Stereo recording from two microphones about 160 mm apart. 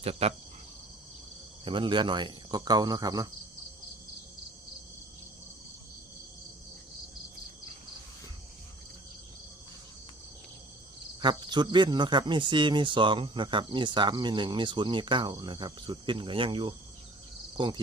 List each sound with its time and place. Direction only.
0.0 s speech: 40° right (ahead or behind)
1.6 s speech: 30° right (ahead or behind)
11.2 s speech: 25° right (ahead or behind)